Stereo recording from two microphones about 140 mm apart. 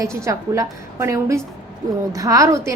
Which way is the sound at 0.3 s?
20° right (ahead or behind).